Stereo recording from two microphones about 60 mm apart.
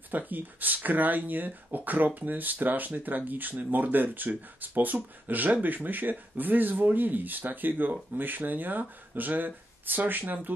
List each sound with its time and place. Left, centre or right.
0.1 s speech: right